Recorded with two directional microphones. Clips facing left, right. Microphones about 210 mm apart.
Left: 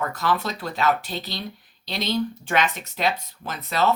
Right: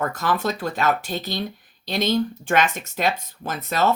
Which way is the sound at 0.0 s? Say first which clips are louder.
Right 2 dB; 45° right (ahead or behind).